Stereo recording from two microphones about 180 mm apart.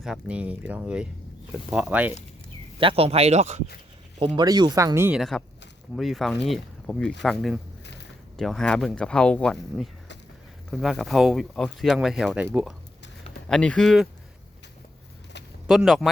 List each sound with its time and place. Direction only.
0.0 s speech: 5° right (ahead or behind)
2.8 s speech: 35° right (ahead or behind)
4.4 s speech: 25° right (ahead or behind)
6.0 s speech: centre (ahead or behind)
13.5 s speech: 5° left (ahead or behind)
15.6 s speech: centre (ahead or behind)